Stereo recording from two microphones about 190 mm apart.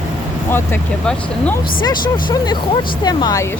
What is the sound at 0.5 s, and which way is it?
Speech, 10° left (ahead or behind).